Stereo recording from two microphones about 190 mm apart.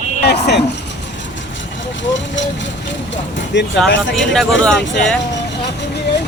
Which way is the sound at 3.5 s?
70° left (ahead or behind).